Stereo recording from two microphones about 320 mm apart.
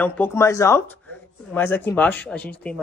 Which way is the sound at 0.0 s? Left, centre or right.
Centre.